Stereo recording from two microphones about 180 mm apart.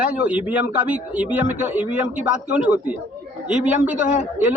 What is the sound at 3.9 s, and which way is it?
Speech, 5° right (ahead or behind).